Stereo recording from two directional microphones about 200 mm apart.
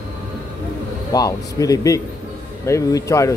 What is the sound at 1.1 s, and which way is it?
Speech, 15° left (ahead or behind).